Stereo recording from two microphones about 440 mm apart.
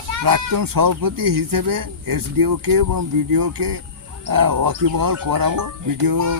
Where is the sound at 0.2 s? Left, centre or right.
Right.